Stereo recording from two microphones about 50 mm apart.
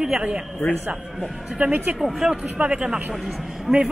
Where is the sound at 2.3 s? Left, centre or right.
Right.